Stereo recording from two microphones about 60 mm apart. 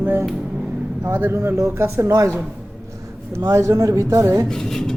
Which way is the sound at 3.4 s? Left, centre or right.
Right.